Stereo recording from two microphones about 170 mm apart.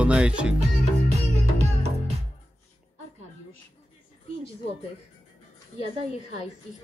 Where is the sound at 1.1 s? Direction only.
40° right (ahead or behind).